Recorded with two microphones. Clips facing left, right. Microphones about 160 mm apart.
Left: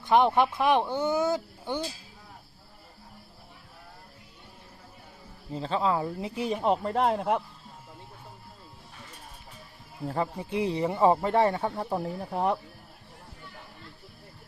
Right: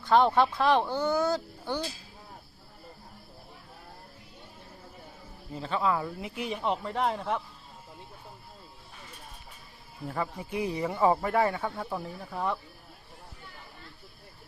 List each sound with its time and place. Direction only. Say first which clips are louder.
0.0 s speech: left 1 dB; 20° left (ahead or behind)
5.5 s speech: left 2 dB; 30° left (ahead or behind)
10.1 s speech: left 3 dB; 30° left (ahead or behind)